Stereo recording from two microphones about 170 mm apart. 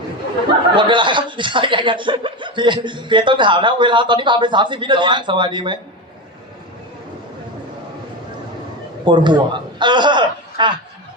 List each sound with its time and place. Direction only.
0.8 s speech: 30° right (ahead or behind)
9.0 s a man's voice: 25° right (ahead or behind)